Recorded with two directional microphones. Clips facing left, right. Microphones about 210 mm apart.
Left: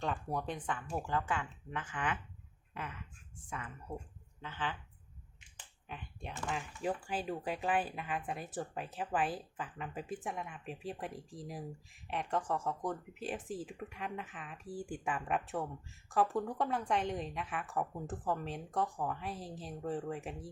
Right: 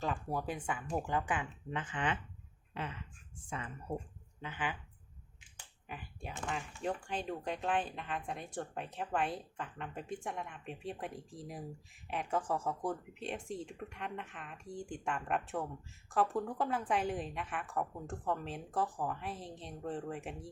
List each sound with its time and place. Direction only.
0.0 s speech: centre (ahead or behind); by 3.0 s 25° right (ahead or behind)
4.4 s speech: 15° right (ahead or behind)
5.9 s speech: 5° right (ahead or behind)